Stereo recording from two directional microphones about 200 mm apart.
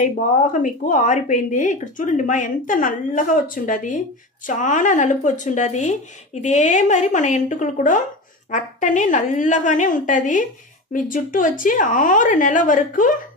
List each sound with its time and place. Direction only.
0.0 s speech: 40° left (ahead or behind)